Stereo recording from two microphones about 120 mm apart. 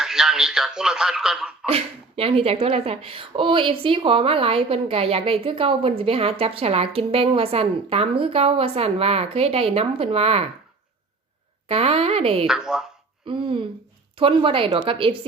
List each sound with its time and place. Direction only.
0.0 s speech: 5° right (ahead or behind)
1.6 s speech: 55° right (ahead or behind)
11.7 s speech: 55° right (ahead or behind)
12.5 s speech: 5° right (ahead or behind)
13.2 s speech: 45° right (ahead or behind)